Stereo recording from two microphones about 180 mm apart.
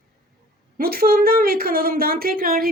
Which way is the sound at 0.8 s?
55° right (ahead or behind).